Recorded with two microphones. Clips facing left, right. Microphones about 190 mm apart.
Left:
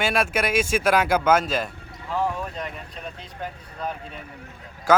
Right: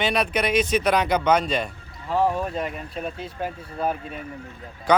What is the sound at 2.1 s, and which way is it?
Speech, 30° right (ahead or behind).